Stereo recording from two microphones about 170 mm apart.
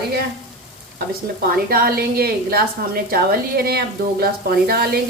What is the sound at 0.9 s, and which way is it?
A woman's voice, 60° right (ahead or behind).